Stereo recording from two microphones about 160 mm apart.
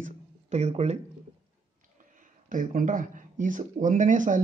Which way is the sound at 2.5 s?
55° right (ahead or behind).